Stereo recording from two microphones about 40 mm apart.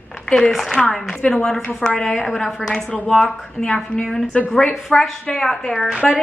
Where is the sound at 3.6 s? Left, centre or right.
Left.